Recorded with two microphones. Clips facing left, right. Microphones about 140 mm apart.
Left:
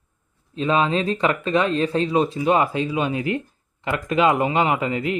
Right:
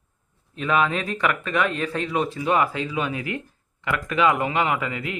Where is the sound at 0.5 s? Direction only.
25° left (ahead or behind).